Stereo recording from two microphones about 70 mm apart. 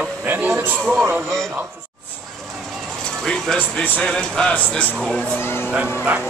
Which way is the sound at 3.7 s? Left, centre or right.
Centre.